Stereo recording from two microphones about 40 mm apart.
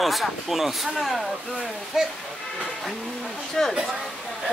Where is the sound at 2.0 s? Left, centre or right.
Centre.